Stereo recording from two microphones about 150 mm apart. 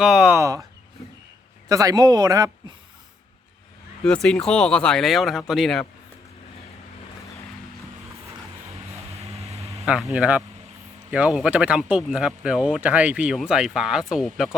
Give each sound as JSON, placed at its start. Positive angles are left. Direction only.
{"t": 0.0, "sound": "speech", "side_deg": 0}
{"t": 0.3, "sound": "speech", "side_deg": -20}
{"t": 1.6, "sound": "speech", "side_deg": -25}
{"t": 4.0, "sound": "speech", "side_deg": 5}
{"t": 9.8, "sound": "speech", "side_deg": -5}